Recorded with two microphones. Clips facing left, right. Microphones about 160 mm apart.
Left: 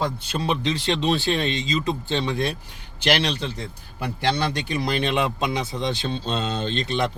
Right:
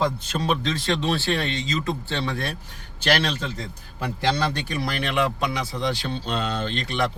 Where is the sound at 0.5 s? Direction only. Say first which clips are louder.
Left 1 dB; 15° left (ahead or behind).